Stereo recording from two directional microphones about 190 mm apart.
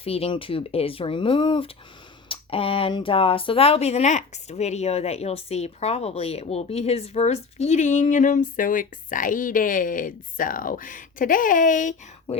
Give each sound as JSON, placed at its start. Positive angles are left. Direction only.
{"t": 0.0, "sound": "speech", "side_deg": 30}